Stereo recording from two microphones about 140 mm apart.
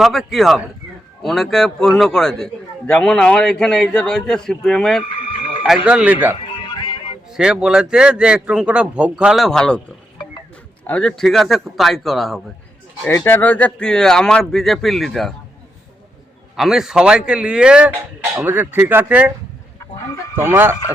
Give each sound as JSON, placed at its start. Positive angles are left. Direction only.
{"t": 0.0, "sound": "a man's voice", "side_deg": 0}
{"t": 6.5, "sound": "music", "side_deg": 35}
{"t": 7.3, "sound": "speech", "side_deg": -5}
{"t": 10.8, "sound": "speech", "side_deg": 5}
{"t": 13.1, "sound": "speech", "side_deg": 15}
{"t": 16.6, "sound": "a man's voice", "side_deg": -5}
{"t": 20.3, "sound": "a man's voice", "side_deg": -15}